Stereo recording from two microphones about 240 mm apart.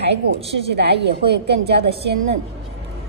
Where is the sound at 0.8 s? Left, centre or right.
Right.